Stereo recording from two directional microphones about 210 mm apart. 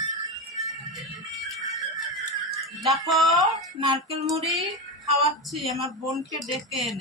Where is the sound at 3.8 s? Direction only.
20° right (ahead or behind).